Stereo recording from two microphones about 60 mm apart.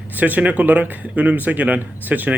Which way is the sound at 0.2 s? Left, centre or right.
Right.